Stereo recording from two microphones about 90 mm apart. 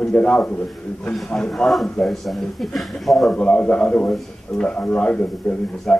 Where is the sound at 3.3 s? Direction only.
10° left (ahead or behind).